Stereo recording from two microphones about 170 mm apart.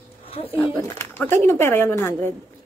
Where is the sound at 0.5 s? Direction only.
15° left (ahead or behind).